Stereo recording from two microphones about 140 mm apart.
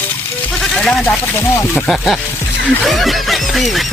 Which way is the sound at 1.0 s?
15° left (ahead or behind).